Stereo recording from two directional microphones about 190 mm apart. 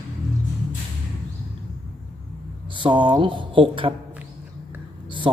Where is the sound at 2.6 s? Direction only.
25° right (ahead or behind).